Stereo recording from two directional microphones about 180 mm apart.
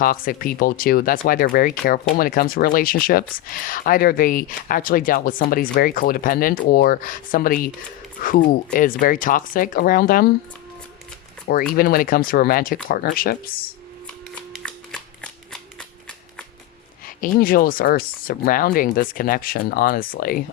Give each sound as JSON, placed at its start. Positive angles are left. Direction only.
{"t": 0.0, "sound": "speech", "side_deg": 50}
{"t": 11.5, "sound": "speech", "side_deg": 60}
{"t": 14.3, "sound": "shuffling cards", "side_deg": 5}
{"t": 17.2, "sound": "speech", "side_deg": 50}